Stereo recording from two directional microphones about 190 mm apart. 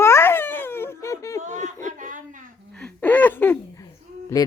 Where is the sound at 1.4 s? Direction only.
40° right (ahead or behind).